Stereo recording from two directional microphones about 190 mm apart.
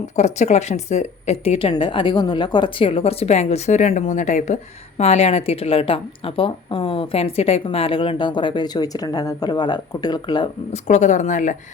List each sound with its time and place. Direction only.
0.2 s speech: 35° left (ahead or behind)
10.8 s speech: 40° left (ahead or behind)